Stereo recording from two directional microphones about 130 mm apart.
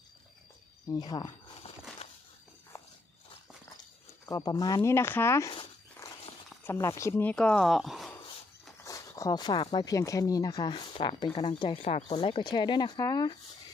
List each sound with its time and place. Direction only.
0.9 s speech: 30° left (ahead or behind)
4.3 s speech: 30° left (ahead or behind)
6.7 s speech: 25° left (ahead or behind); by 8.1 s centre (ahead or behind)
8.8 s speech: 25° left (ahead or behind)